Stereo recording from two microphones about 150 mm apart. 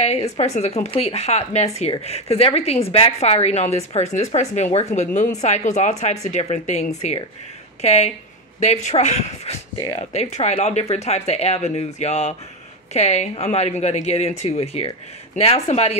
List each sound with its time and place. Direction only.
0.0 s a woman's voice: 45° left (ahead or behind)